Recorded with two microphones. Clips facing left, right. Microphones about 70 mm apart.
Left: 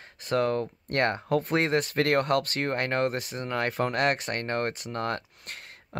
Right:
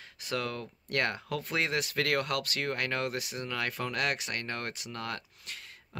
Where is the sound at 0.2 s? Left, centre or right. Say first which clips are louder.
Left 9 dB; left.